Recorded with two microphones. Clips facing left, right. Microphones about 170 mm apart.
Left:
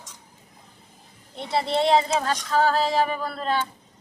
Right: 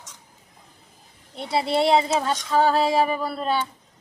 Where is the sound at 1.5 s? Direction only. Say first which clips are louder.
Right 1 dB; 5° right (ahead or behind).